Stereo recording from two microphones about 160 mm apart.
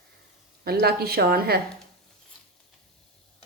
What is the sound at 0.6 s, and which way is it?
Speech, 75° right (ahead or behind).